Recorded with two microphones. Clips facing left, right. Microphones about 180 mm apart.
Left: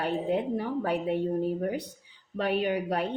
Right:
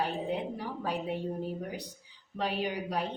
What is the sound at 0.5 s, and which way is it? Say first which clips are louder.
Speech: left 6 dB; 55° left (ahead or behind).